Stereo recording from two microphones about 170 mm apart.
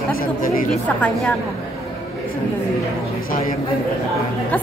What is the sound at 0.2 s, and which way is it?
Chatter, 55° left (ahead or behind).